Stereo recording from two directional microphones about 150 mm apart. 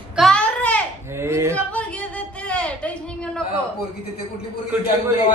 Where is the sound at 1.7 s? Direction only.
10° left (ahead or behind).